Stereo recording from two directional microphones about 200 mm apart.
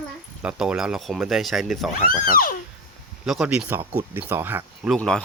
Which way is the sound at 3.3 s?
5° right (ahead or behind).